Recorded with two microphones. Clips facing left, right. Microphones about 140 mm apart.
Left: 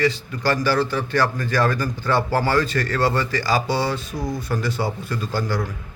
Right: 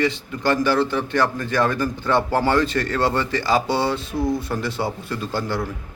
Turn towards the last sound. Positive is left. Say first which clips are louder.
# even
turn(degrees=-25)  # may be behind; listen again after turning